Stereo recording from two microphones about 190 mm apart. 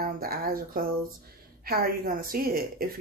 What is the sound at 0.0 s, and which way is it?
Speech, 50° right (ahead or behind).